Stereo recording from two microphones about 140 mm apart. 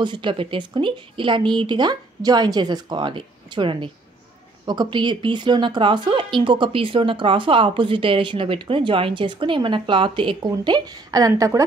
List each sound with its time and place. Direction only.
0.0 s a woman's voice: 35° right (ahead or behind)